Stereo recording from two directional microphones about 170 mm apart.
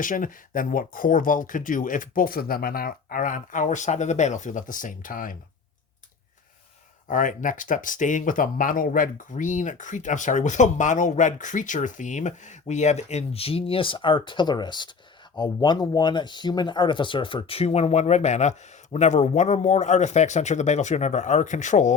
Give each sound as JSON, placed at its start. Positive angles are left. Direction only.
{"t": 0.0, "sound": "speech", "side_deg": 50}
{"t": 7.1, "sound": "speech", "side_deg": 50}